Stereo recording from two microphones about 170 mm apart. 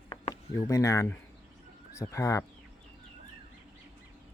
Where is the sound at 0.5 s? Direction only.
20° left (ahead or behind).